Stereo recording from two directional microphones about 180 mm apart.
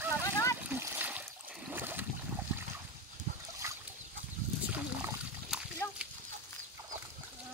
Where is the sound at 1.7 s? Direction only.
10° right (ahead or behind).